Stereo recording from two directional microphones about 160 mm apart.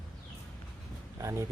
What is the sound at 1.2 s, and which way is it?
Speech, 20° right (ahead or behind).